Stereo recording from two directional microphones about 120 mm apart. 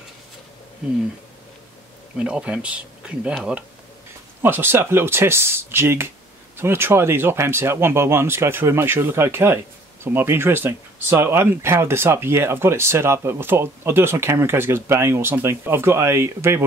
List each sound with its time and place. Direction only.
2.1 s speech: 10° right (ahead or behind)
4.4 s speech: 15° right (ahead or behind)